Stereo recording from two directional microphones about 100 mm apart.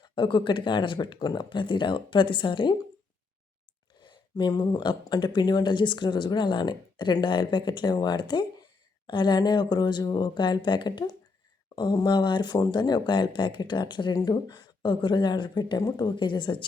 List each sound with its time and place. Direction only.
0.0 s speech: 50° left (ahead or behind)
4.0 s speech: 50° left (ahead or behind)